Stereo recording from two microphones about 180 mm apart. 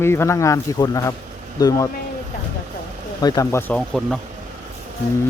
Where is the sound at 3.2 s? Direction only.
20° left (ahead or behind); by 4.2 s 5° left (ahead or behind).